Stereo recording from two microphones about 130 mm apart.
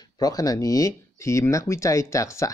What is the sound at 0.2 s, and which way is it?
Speech, 30° left (ahead or behind).